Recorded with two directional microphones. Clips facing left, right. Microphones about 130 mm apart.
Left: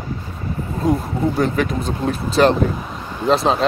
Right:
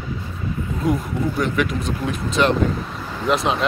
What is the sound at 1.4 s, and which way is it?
Speech, 35° left (ahead or behind).